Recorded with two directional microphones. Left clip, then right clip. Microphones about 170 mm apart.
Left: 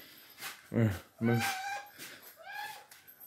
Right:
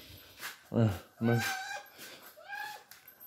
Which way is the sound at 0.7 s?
Centre (ahead or behind).